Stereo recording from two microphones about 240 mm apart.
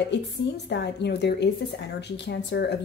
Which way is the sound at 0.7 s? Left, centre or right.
Left.